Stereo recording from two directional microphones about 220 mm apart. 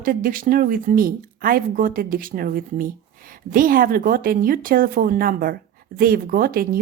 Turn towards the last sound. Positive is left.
turn(degrees=-40)  # may be behind; listen again after turning